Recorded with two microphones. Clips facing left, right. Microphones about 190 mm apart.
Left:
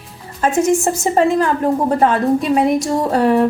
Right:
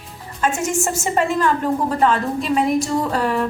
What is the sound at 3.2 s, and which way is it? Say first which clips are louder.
Music: left 7 dB; 30° left (ahead or behind).